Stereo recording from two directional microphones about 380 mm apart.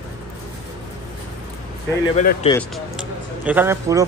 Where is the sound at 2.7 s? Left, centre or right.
Centre.